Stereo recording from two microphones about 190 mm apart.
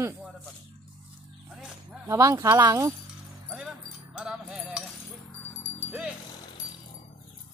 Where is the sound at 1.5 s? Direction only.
Centre (ahead or behind).